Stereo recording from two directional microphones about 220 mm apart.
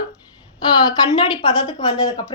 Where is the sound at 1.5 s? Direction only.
25° left (ahead or behind).